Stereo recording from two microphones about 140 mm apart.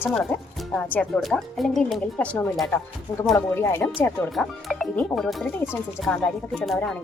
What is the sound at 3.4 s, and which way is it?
Speech, 15° left (ahead or behind).